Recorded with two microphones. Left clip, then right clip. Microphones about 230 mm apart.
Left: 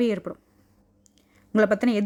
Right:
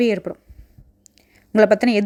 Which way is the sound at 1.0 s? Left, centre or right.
Centre.